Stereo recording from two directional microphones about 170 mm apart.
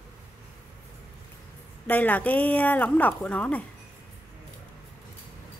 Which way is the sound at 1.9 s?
10° left (ahead or behind).